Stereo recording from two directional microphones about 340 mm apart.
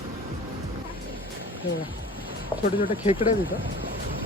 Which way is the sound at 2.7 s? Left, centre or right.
Centre.